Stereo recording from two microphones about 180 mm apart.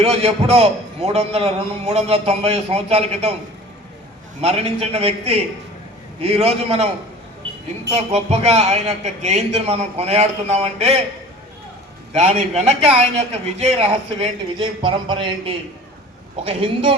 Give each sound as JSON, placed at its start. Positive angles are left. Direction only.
{"t": 0.0, "sound": "a man's voice", "side_deg": -35}
{"t": 4.4, "sound": "a man's voice", "side_deg": -35}
{"t": 7.9, "sound": "a man's voice", "side_deg": -35}
{"t": 12.1, "sound": "a man's voice", "side_deg": -40}